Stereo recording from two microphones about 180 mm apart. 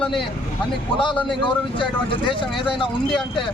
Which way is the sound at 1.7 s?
25° left (ahead or behind).